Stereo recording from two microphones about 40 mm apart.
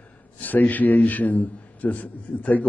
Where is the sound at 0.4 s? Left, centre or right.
Left.